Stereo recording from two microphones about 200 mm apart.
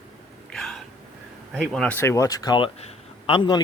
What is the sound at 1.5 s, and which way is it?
A man's voice, centre (ahead or behind).